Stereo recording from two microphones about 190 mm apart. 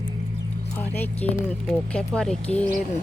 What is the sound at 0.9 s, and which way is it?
Speech, 10° left (ahead or behind).